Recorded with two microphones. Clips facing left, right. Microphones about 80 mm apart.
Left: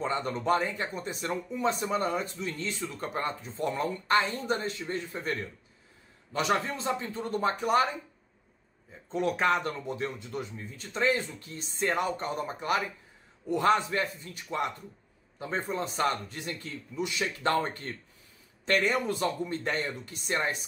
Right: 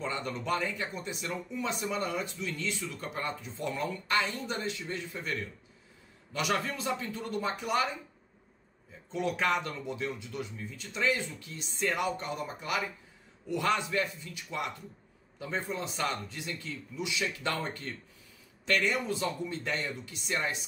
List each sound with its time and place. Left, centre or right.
0.0 s speech: left
6.3 s speech: left
9.1 s speech: left
19.0 s speech: left